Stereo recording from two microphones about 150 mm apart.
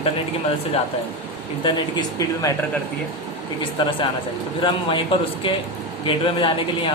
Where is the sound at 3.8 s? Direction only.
35° left (ahead or behind).